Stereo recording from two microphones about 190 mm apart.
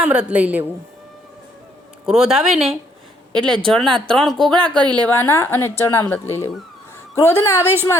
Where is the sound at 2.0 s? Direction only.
5° right (ahead or behind); by 6.2 s 10° left (ahead or behind).